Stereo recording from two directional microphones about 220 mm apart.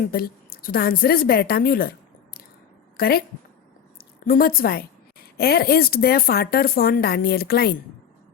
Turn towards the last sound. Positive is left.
turn(degrees=45)  # may be behind; listen again after turning